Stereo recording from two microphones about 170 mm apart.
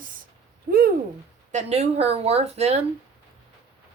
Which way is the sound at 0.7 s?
60° right (ahead or behind).